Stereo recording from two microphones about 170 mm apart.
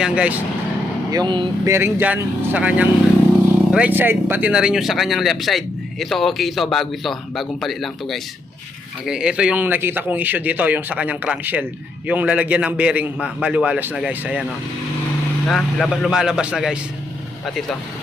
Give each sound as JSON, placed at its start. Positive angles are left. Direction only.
{"t": 0.0, "sound": "speech", "side_deg": -5}
{"t": 1.1, "sound": "speech", "side_deg": -25}
{"t": 1.7, "sound": "speech", "side_deg": -10}
{"t": 15.4, "sound": "speech", "side_deg": 0}